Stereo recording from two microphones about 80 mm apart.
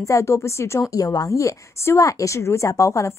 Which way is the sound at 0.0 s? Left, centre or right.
Left.